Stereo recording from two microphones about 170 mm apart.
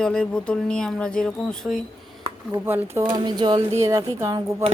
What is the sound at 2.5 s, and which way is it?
Speech, 10° right (ahead or behind).